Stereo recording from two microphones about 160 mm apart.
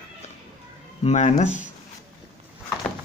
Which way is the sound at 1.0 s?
45° left (ahead or behind).